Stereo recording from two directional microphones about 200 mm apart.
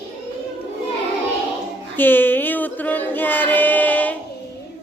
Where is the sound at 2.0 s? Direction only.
10° left (ahead or behind).